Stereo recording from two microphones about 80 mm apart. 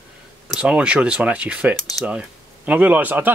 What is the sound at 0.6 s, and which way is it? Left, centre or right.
Speech, centre.